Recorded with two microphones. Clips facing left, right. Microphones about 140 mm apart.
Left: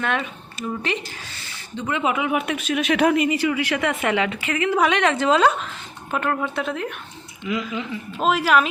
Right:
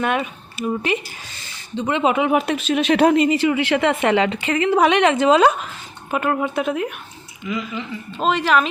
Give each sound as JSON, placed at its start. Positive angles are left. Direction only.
{"t": 0.0, "sound": "speech", "side_deg": -15}
{"t": 1.7, "sound": "speech", "side_deg": -25}
{"t": 7.4, "sound": "speech", "side_deg": 10}